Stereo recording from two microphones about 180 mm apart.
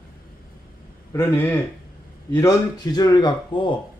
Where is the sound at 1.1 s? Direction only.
15° left (ahead or behind).